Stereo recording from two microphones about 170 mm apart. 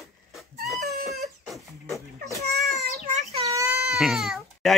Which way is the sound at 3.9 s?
Centre (ahead or behind).